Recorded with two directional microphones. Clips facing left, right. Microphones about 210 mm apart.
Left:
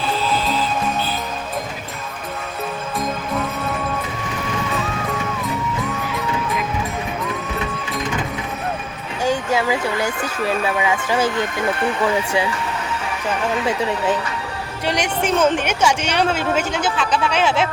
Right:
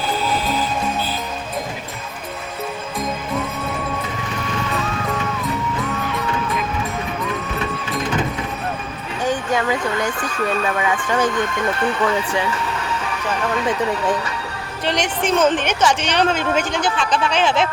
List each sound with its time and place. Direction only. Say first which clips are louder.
9.2 s speech: left 1 dB; 10° left (ahead or behind)
14.8 s speech: even; 10° left (ahead or behind)